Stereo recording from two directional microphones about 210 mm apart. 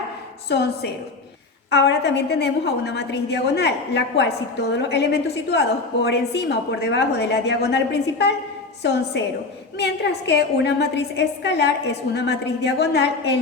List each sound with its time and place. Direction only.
0.4 s a woman's voice: 50° left (ahead or behind)
8.8 s a woman's voice: 55° left (ahead or behind)